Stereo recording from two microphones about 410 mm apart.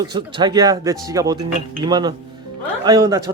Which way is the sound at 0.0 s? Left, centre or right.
Centre.